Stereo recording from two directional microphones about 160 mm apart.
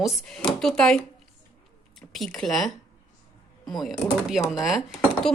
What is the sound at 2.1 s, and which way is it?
Speech, centre (ahead or behind).